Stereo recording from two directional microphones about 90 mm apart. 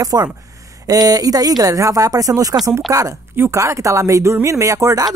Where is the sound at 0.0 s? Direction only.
40° right (ahead or behind).